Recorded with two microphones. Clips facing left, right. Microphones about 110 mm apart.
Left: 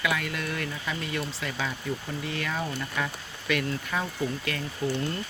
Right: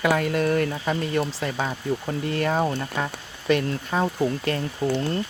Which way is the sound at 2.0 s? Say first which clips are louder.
Right 8 dB; 45° right (ahead or behind).